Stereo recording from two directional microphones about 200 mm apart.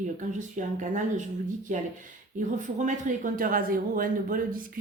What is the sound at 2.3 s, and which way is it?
A woman's voice, 40° right (ahead or behind).